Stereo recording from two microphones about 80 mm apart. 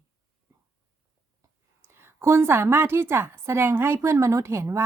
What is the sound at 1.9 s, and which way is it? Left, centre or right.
A woman's voice, right.